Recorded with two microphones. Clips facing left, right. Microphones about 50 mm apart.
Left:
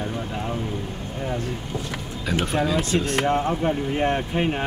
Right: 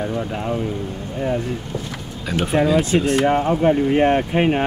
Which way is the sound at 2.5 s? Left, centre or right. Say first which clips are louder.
Right 7 dB; centre.